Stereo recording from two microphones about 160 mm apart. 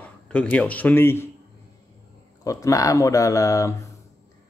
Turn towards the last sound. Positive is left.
turn(degrees=20)  # may be behind; listen again after turning